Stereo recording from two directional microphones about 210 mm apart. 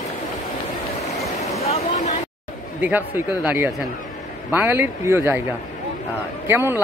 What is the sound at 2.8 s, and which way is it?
Speech, 10° right (ahead or behind).